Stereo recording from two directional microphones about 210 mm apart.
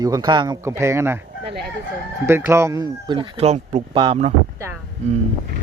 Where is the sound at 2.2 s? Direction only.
10° right (ahead or behind).